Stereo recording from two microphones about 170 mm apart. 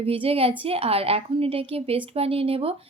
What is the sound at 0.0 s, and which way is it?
A woman's voice, 35° right (ahead or behind).